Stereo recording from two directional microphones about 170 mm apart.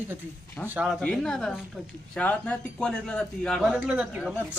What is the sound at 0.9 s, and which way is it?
A man's voice, 5° left (ahead or behind).